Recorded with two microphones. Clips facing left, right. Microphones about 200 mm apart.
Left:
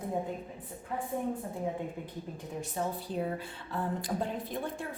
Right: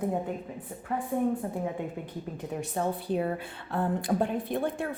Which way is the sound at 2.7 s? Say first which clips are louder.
Right 5 dB; 65° right (ahead or behind).